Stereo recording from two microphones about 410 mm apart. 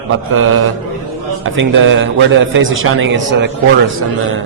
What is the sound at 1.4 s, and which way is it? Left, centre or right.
A man's voice, right.